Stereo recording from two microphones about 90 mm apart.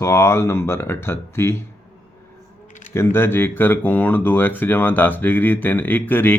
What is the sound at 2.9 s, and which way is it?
Speech, 25° left (ahead or behind).